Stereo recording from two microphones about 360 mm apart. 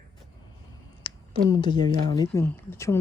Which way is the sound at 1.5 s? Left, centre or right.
Centre.